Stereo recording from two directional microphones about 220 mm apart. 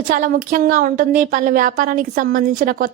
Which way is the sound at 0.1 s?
40° right (ahead or behind).